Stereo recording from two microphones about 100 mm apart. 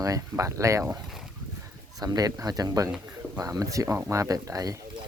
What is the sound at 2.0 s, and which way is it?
Speech, 40° right (ahead or behind).